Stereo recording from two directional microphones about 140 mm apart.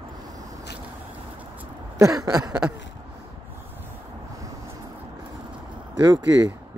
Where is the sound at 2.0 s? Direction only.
25° right (ahead or behind).